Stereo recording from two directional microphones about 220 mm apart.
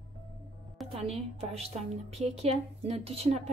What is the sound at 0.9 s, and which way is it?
A woman's voice, 25° right (ahead or behind).